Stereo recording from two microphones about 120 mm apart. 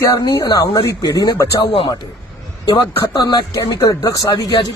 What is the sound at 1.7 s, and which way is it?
Speech, 50° left (ahead or behind).